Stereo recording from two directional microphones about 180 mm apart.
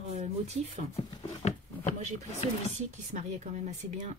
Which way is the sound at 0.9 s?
35° left (ahead or behind).